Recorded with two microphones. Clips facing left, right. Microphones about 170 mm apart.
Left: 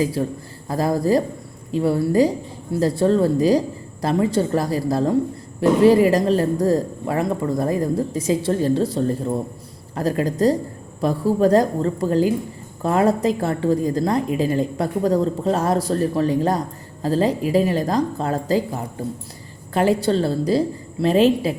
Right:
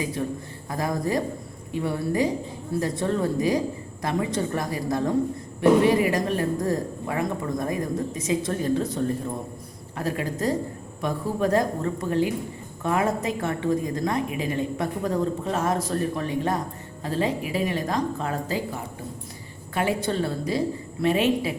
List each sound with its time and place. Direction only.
0.0 s a woman's voice: 30° left (ahead or behind)
19.7 s a woman's voice: 35° left (ahead or behind)